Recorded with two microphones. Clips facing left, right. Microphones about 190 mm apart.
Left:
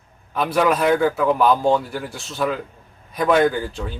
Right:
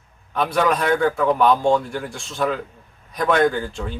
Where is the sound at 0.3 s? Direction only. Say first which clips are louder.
Left 1 dB; 5° left (ahead or behind).